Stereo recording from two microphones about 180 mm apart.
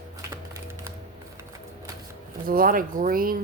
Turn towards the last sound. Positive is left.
turn(degrees=-50)  # may be behind; listen again after turning